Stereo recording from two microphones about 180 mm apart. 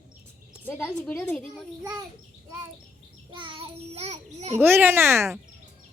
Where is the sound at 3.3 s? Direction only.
25° right (ahead or behind).